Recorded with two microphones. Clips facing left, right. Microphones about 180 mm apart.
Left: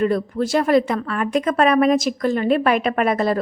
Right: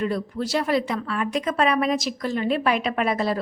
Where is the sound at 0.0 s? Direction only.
50° left (ahead or behind).